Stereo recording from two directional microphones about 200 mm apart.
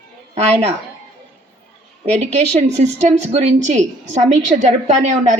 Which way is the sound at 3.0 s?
35° right (ahead or behind).